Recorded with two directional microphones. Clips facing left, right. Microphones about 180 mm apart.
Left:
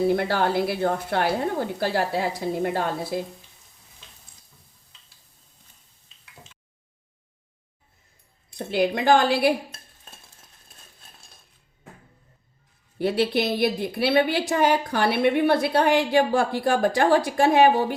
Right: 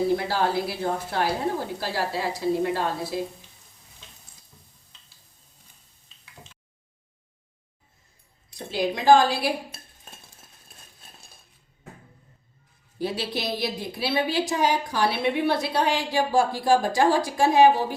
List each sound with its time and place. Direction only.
0.2 s a woman's voice: 60° left (ahead or behind)
8.5 s a woman's voice: 60° left (ahead or behind)
9.7 s stir: 10° right (ahead or behind)
13.0 s a woman's voice: 60° left (ahead or behind)